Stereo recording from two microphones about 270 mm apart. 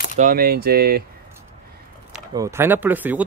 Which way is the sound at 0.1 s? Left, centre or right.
Right.